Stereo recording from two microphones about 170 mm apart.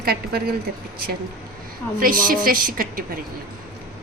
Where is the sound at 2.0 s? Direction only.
55° right (ahead or behind).